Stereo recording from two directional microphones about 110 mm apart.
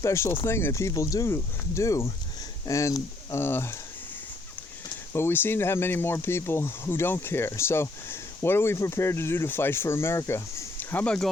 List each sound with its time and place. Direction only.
0.0 s speech: 25° left (ahead or behind)
3.3 s speech: 20° left (ahead or behind)
5.1 s speech: 20° left (ahead or behind)